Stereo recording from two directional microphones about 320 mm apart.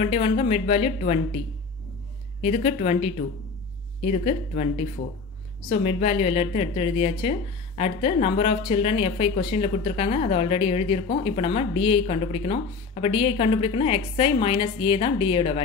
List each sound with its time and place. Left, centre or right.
0.0 s a woman's voice: centre
2.4 s a woman's voice: centre
5.7 s a woman's voice: centre